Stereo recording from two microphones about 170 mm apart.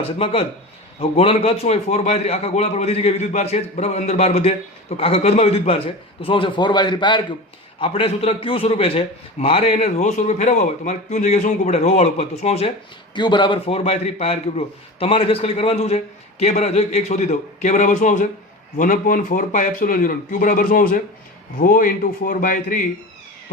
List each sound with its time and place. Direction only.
0.0 s a man's voice: 35° left (ahead or behind)
13.1 s a man's voice: 25° left (ahead or behind); by 22.9 s 55° left (ahead or behind)